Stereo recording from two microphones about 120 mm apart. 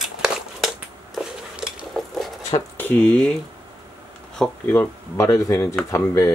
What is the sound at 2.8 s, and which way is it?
Speech, 15° left (ahead or behind).